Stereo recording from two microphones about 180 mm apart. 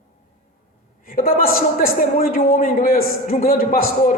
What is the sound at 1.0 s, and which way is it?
A man's voice, 55° left (ahead or behind).